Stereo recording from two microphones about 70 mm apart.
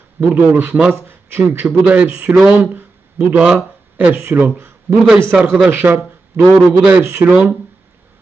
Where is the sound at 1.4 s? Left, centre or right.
Right.